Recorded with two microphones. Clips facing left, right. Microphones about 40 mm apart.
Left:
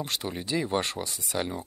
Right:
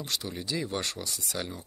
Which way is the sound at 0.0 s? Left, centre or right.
Left.